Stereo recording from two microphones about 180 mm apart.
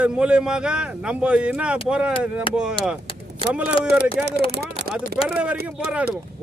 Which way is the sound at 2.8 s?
30° left (ahead or behind).